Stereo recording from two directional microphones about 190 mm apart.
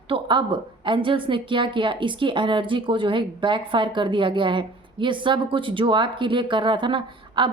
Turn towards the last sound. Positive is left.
turn(degrees=-25)  # may be behind; listen again after turning